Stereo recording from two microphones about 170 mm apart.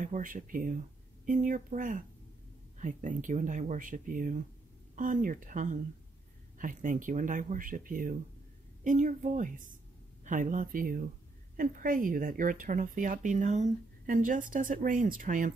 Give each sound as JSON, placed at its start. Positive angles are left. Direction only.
{"t": 0.0, "sound": "speech", "side_deg": -50}